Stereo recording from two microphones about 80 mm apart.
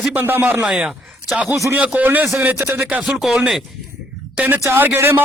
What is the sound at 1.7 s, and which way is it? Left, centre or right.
A man's voice, centre.